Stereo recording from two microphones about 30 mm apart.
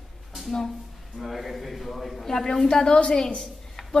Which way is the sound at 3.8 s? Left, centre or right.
Centre.